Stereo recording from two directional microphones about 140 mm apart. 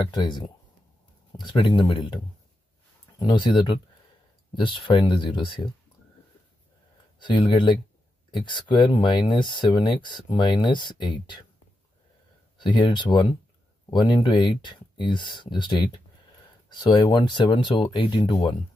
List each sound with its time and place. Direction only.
0.1 s speech: 30° left (ahead or behind)
3.2 s speech: 30° left (ahead or behind)
7.2 s speech: 35° left (ahead or behind)
12.5 s speech: 35° left (ahead or behind)